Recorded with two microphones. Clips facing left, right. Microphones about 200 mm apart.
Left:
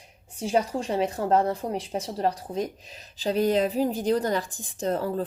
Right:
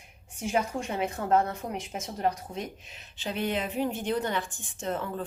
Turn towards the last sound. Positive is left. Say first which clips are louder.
# left 6 dB
turn(degrees=35)  # may be behind; listen again after turning